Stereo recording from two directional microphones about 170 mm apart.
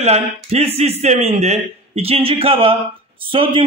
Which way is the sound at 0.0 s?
40° right (ahead or behind).